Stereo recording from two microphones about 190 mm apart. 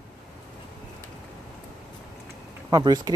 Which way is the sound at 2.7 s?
20° right (ahead or behind).